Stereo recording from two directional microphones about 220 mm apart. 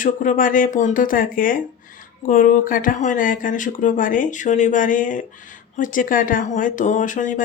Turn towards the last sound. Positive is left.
turn(degrees=35)  # may be behind; listen again after turning